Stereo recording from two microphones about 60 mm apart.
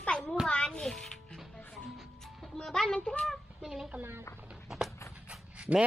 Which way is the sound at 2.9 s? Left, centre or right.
Centre.